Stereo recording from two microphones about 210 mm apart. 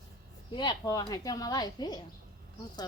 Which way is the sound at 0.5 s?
20° left (ahead or behind).